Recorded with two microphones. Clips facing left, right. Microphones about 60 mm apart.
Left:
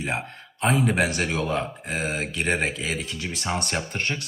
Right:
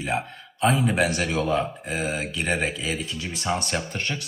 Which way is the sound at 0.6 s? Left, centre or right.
Left.